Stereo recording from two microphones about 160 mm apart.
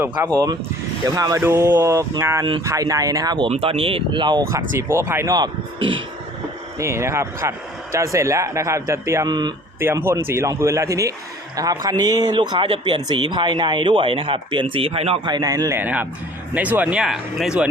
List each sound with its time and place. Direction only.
0.2 s speech: 15° right (ahead or behind)
3.5 s speech: 35° right (ahead or behind)
4.7 s speech: 15° right (ahead or behind)
6.7 s speech: 15° right (ahead or behind)
9.8 s speech: 15° right (ahead or behind)